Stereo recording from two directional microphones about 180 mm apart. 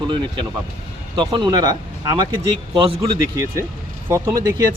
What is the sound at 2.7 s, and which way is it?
Speech, 30° right (ahead or behind).